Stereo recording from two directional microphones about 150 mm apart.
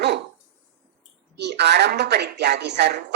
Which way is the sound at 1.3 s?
90° right.